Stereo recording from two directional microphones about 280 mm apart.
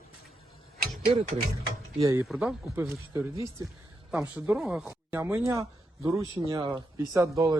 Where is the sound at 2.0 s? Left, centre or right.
Centre.